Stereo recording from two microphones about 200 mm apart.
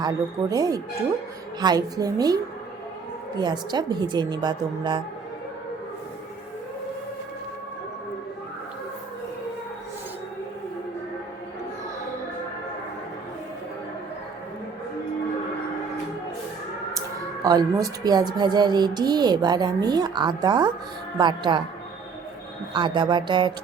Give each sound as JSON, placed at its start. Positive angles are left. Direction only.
{"t": 0.0, "sound": "speech", "side_deg": -20}
{"t": 17.4, "sound": "speech", "side_deg": -20}
{"t": 22.7, "sound": "speech", "side_deg": -25}